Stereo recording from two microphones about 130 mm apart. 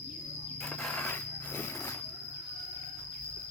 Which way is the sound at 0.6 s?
10° left (ahead or behind).